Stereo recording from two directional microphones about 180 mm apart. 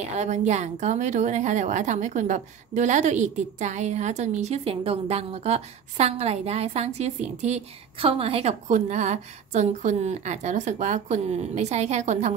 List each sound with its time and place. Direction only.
0.1 s a woman's voice: 40° right (ahead or behind)